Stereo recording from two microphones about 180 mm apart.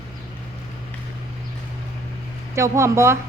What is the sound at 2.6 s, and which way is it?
Speech, 15° right (ahead or behind).